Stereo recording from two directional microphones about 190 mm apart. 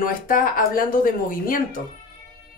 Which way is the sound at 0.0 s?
45° left (ahead or behind).